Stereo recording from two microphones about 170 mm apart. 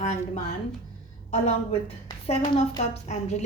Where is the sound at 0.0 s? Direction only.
40° left (ahead or behind).